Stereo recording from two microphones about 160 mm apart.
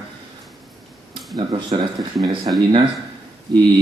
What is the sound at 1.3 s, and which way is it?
Speech, 25° right (ahead or behind).